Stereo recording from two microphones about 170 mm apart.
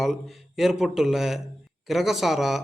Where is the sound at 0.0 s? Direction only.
Centre (ahead or behind).